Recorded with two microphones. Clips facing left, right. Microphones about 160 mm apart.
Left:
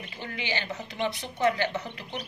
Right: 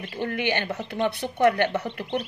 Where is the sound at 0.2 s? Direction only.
55° right (ahead or behind).